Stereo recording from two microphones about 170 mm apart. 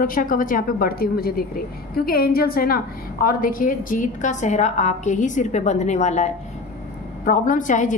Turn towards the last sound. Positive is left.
turn(degrees=50)  # may be behind; listen again after turning